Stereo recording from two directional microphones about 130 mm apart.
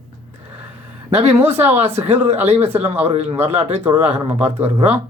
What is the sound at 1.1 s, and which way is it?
Speech, 50° right (ahead or behind).